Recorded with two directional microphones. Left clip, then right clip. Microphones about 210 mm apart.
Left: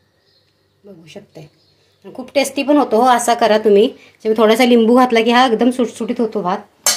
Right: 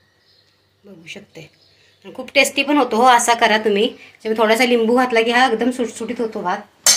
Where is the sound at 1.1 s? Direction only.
30° left (ahead or behind); by 6.5 s 45° left (ahead or behind).